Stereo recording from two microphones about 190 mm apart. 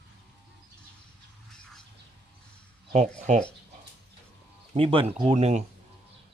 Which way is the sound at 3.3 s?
40° right (ahead or behind).